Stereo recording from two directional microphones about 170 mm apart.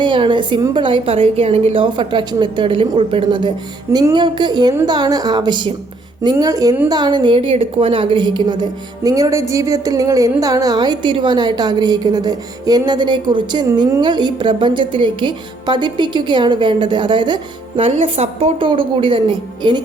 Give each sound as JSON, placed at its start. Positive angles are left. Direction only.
{"t": 0.0, "sound": "a woman's voice", "side_deg": -30}